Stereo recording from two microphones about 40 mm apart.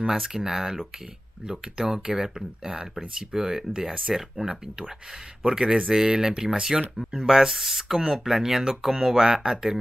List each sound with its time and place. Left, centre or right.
0.0 s speech: centre
7.2 s speech: centre